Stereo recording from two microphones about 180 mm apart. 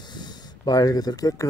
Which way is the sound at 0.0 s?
25° left (ahead or behind).